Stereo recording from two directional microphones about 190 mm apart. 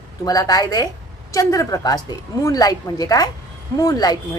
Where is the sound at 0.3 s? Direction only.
20° left (ahead or behind).